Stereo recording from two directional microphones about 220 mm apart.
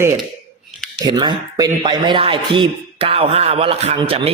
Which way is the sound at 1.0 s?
20° right (ahead or behind).